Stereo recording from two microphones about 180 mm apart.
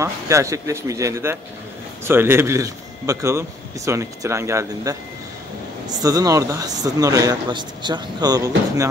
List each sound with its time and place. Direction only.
0.0 s a man's voice: 15° right (ahead or behind)